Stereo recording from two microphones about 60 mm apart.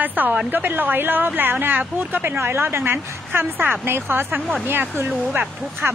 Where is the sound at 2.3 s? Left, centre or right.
Right.